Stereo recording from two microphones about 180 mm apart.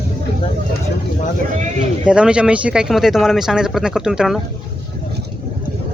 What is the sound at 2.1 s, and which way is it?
Speech, 5° right (ahead or behind).